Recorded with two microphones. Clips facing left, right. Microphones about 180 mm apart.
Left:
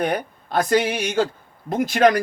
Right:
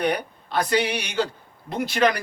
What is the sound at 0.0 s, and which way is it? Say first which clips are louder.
A man's voice: left 1 dB; 45° left (ahead or behind).